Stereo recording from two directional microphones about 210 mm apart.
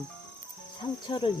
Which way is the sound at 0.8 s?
20° left (ahead or behind).